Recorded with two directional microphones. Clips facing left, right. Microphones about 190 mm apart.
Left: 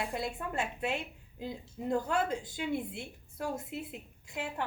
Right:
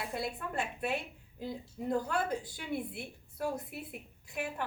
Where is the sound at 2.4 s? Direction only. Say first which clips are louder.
Left 3 dB; 20° left (ahead or behind).